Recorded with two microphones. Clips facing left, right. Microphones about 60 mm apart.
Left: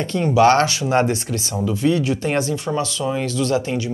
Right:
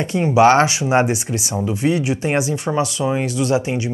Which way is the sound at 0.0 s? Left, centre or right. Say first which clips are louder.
Right 2 dB; centre.